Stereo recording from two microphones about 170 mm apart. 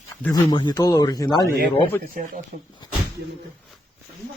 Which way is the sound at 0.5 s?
25° left (ahead or behind).